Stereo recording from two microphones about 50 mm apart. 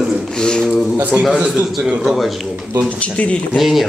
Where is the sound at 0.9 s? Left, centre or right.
Right.